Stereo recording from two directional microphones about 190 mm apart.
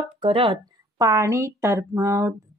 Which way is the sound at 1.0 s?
15° right (ahead or behind).